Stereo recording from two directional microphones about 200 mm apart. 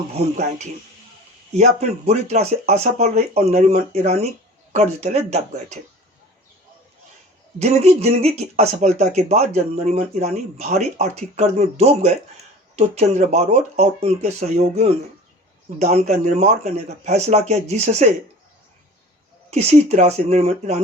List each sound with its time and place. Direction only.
0.1 s speech: 35° right (ahead or behind)
7.6 s speech: 30° right (ahead or behind)
19.5 s speech: 30° right (ahead or behind)